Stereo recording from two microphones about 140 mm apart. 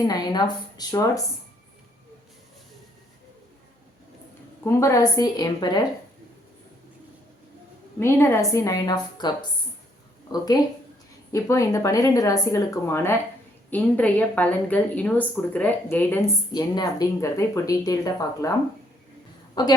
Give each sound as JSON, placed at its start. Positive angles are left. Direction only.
{"t": 0.0, "sound": "speech", "side_deg": 30}
{"t": 4.6, "sound": "speech", "side_deg": 20}
{"t": 7.9, "sound": "speech", "side_deg": 15}
{"t": 11.3, "sound": "a woman's voice", "side_deg": 20}
{"t": 16.5, "sound": "speech", "side_deg": 30}
{"t": 19.6, "sound": "a woman's voice", "side_deg": 30}